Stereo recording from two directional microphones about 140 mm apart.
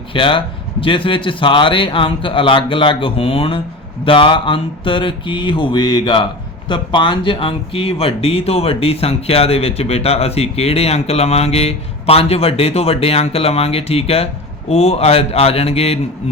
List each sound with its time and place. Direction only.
0.1 s a man's voice: 40° left (ahead or behind)